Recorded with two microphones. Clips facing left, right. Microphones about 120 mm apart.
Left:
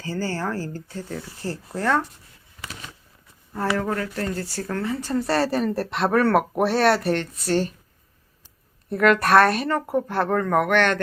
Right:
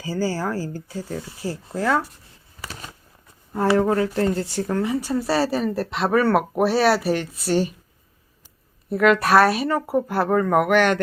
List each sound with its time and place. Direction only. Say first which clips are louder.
0.0 s speech: right 3 dB; 10° right (ahead or behind)
2.6 s a sound: right 2 dB; 40° right (ahead or behind)
3.5 s speech: right 6 dB; 20° right (ahead or behind)
8.9 s speech: right 1 dB; centre (ahead or behind)